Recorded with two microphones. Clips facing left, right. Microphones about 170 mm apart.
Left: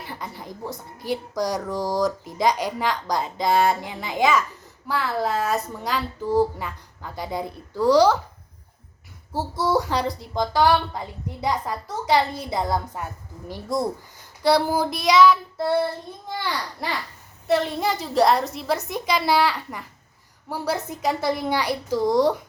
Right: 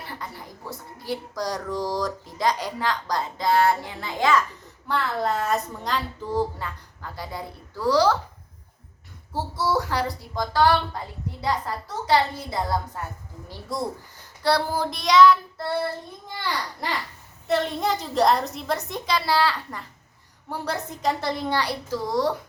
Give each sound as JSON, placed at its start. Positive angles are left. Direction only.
{"t": 0.9, "sound": "speech", "side_deg": 15}
{"t": 9.6, "sound": "speech", "side_deg": 15}
{"t": 14.4, "sound": "speech", "side_deg": 15}
{"t": 17.5, "sound": "a woman's voice", "side_deg": 0}